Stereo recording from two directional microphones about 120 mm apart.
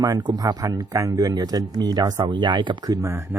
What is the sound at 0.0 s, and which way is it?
Speech, 35° right (ahead or behind).